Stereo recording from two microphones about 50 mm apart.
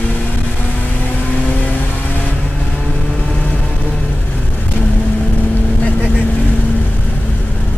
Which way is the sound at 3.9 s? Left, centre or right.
Left.